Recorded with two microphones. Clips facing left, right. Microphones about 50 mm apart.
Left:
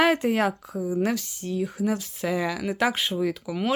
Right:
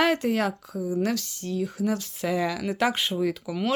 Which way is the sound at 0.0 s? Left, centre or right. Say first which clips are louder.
Left 2 dB; centre.